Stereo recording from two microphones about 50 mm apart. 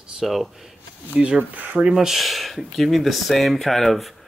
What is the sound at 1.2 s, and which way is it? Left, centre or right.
Speech, right.